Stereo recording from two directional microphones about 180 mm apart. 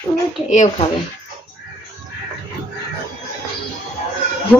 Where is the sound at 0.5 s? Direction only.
40° left (ahead or behind).